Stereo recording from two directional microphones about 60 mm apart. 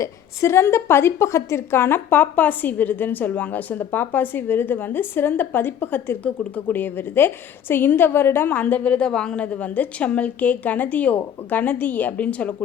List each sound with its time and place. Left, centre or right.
0.0 s a woman's voice: left
9.0 s a woman's voice: centre